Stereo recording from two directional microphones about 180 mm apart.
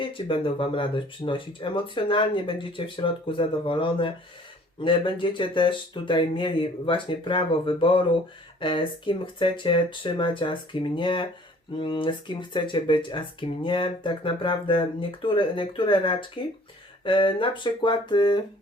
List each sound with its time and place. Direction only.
0.0 s speech: 30° left (ahead or behind)